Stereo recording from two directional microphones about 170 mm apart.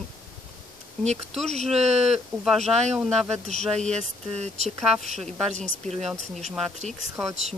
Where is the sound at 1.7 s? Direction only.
40° right (ahead or behind).